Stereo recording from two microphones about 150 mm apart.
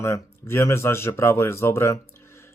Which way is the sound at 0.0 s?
15° left (ahead or behind).